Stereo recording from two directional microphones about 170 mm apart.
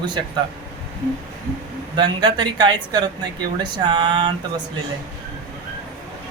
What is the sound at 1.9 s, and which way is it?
Speech, 25° right (ahead or behind).